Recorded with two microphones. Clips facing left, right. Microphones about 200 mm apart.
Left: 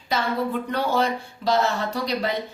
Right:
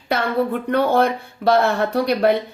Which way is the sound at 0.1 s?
60° right (ahead or behind).